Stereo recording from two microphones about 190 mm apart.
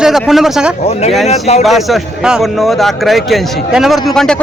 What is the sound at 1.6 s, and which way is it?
A man's voice, centre (ahead or behind).